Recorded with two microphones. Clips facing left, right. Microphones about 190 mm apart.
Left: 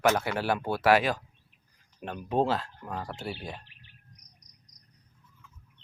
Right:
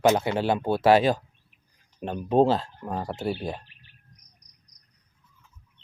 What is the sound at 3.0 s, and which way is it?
Speech, 40° right (ahead or behind).